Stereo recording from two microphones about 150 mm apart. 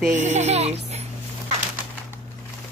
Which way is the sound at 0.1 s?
50° right (ahead or behind).